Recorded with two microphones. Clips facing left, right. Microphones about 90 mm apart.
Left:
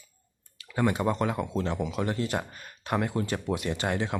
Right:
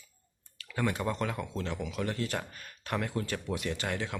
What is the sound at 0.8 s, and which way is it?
Speech, 20° left (ahead or behind).